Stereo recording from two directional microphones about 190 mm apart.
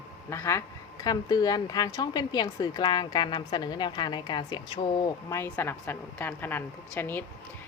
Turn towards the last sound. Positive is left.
turn(degrees=10)  # may be behind; listen again after turning